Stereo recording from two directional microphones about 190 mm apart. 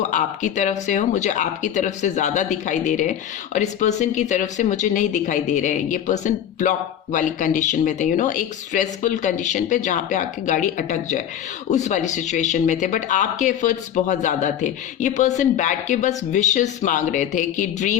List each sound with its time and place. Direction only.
0.0 s speech: 40° left (ahead or behind)